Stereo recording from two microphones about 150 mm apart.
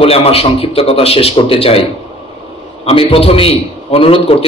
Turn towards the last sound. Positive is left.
turn(degrees=40)  # may be behind; listen again after turning